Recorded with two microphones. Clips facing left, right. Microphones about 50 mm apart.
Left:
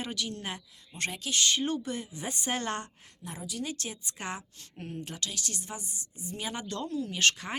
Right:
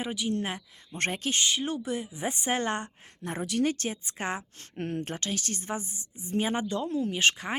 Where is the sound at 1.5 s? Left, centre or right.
Centre.